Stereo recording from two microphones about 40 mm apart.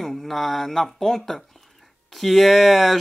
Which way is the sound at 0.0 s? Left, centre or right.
Centre.